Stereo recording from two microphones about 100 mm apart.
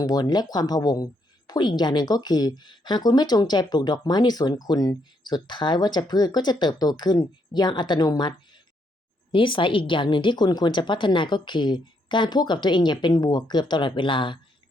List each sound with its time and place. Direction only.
0.0 s speech: 40° left (ahead or behind)
9.3 s speech: 55° left (ahead or behind)